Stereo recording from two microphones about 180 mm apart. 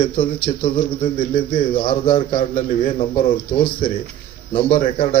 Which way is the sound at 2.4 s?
40° left (ahead or behind).